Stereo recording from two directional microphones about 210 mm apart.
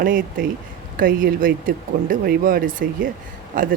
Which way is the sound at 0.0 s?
45° right (ahead or behind).